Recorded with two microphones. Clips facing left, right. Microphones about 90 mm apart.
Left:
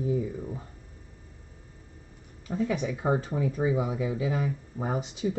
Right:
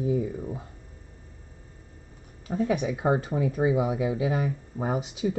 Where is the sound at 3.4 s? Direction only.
65° right (ahead or behind).